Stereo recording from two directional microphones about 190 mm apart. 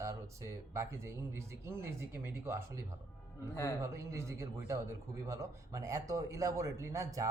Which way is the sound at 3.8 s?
15° right (ahead or behind).